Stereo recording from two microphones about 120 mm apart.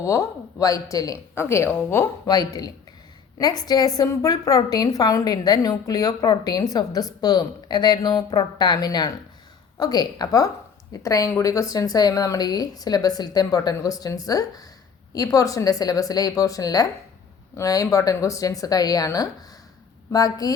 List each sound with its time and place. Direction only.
0.0 s speech: 25° left (ahead or behind)
2.2 s a woman's voice: 30° left (ahead or behind)